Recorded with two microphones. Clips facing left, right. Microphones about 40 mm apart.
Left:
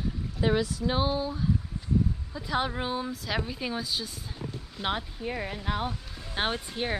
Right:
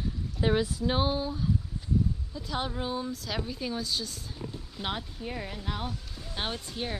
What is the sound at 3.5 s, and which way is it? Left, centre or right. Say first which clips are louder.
A woman's voice: left 1 dB; centre.